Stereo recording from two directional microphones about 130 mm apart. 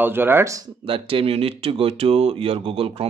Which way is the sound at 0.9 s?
45° right (ahead or behind).